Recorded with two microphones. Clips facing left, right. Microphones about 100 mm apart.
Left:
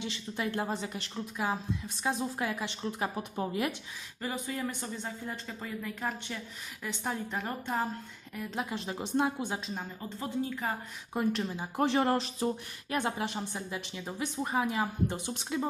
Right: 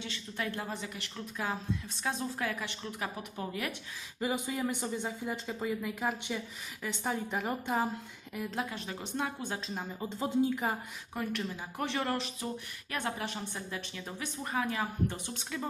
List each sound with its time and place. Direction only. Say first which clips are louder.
0.0 s a woman's voice: left 3 dB; 15° left (ahead or behind)
0.5 s a woman's voice: left 5 dB; 30° left (ahead or behind)
1.1 s a woman's voice: left 3 dB; 10° left (ahead or behind)
4.2 s a woman's voice: right 2 dB; 10° right (ahead or behind)
8.7 s a woman's voice: left 6 dB; 25° left (ahead or behind)
10.0 s speech: right 6 dB; 20° right (ahead or behind)
11.1 s a woman's voice: left 5 dB; 25° left (ahead or behind)
12.9 s a woman's voice: left 4 dB; 20° left (ahead or behind)